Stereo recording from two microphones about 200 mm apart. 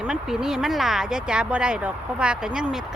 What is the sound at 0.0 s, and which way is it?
Speech, 5° right (ahead or behind).